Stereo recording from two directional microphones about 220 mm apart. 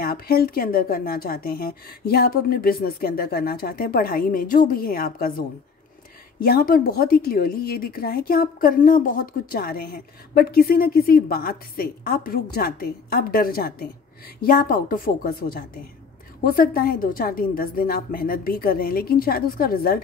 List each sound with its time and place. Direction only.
0.0 s a woman's voice: 45° left (ahead or behind)
6.4 s a woman's voice: 40° left (ahead or behind)